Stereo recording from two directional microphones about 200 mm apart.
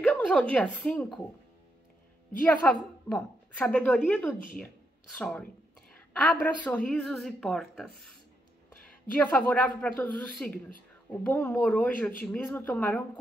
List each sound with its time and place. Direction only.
0.0 s a sound: 5° left (ahead or behind)
0.7 s speech: centre (ahead or behind)
2.4 s a woman's voice: 5° left (ahead or behind)
9.1 s a woman's voice: 5° left (ahead or behind)